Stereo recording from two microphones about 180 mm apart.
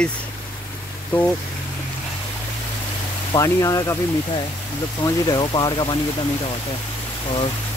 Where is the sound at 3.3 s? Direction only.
20° left (ahead or behind).